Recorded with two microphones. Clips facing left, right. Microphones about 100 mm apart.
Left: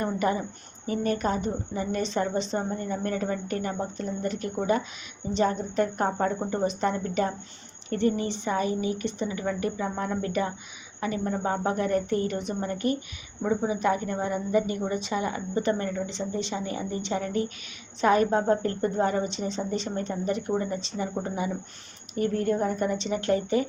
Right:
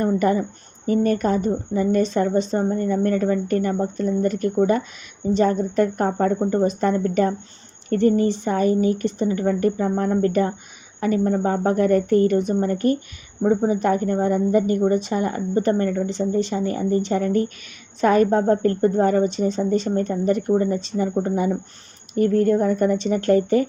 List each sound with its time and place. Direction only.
0.0 s a woman's voice: 45° right (ahead or behind)